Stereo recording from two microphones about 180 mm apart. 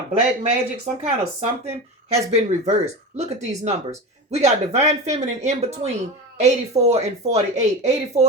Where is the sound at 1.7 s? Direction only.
35° right (ahead or behind).